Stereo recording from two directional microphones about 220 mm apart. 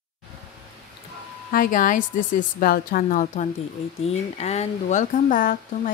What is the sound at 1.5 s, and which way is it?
A woman's voice, 40° left (ahead or behind).